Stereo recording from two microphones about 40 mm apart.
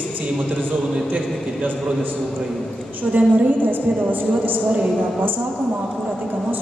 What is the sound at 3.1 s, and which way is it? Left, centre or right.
A woman's voice, right.